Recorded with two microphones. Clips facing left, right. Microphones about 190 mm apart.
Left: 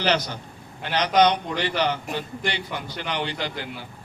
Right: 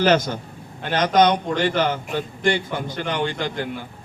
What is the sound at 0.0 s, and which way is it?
A man's voice, 50° right (ahead or behind).